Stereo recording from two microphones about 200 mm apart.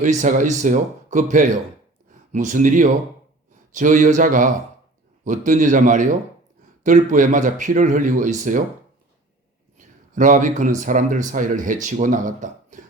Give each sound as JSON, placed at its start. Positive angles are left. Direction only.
{"t": 0.0, "sound": "speech", "side_deg": -35}
{"t": 9.7, "sound": "a sound", "side_deg": -40}
{"t": 10.8, "sound": "speech", "side_deg": -40}